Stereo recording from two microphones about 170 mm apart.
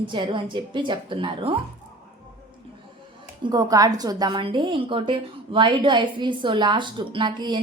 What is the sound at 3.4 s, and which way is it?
A woman's voice, 25° right (ahead or behind).